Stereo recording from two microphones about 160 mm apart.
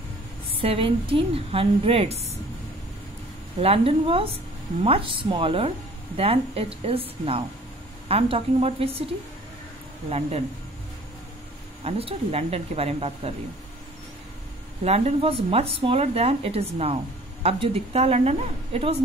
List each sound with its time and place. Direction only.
0.6 s speech: 35° right (ahead or behind)
3.5 s speech: 40° right (ahead or behind)
10.0 s speech: 40° right (ahead or behind)
11.8 s speech: 40° right (ahead or behind)
14.9 s speech: 40° right (ahead or behind)